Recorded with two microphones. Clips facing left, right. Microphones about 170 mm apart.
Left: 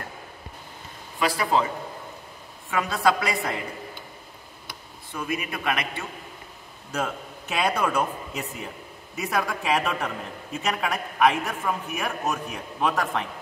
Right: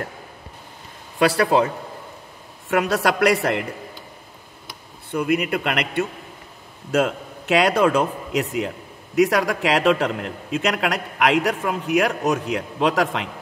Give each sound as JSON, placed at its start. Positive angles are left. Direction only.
{"t": 1.2, "sound": "a man's voice", "side_deg": -70}
{"t": 2.7, "sound": "a man's voice", "side_deg": -75}
{"t": 5.1, "sound": "a man's voice", "side_deg": -65}
{"t": 6.9, "sound": "speech", "side_deg": -90}